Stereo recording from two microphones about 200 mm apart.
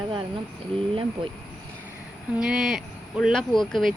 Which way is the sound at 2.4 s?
Centre (ahead or behind).